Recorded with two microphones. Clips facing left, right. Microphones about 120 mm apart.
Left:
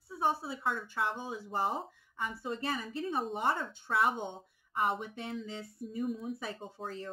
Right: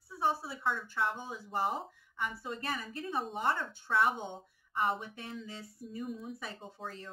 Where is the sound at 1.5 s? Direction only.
Centre (ahead or behind).